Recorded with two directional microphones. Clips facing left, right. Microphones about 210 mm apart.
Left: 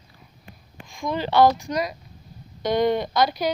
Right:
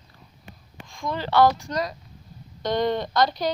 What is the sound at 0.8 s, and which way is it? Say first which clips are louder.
Speech: left 3 dB; 15° left (ahead or behind).